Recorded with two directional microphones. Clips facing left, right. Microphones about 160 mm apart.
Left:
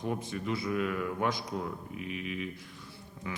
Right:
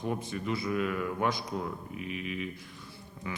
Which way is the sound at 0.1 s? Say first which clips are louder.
Right 1 dB; 10° right (ahead or behind).